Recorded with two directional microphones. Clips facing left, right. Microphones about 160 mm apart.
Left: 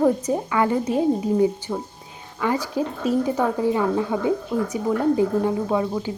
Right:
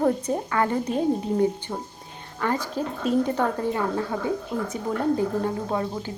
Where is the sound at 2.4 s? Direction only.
10° left (ahead or behind).